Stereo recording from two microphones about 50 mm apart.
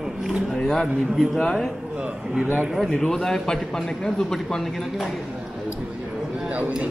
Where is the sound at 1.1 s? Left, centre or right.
Centre.